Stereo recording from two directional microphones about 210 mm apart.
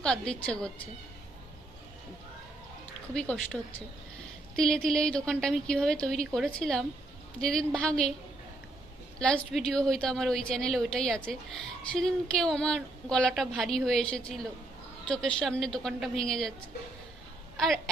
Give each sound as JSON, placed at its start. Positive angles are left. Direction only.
{"t": 0.0, "sound": "a woman's voice", "side_deg": 5}
{"t": 3.2, "sound": "a woman's voice", "side_deg": 5}
{"t": 9.1, "sound": "a woman's voice", "side_deg": 5}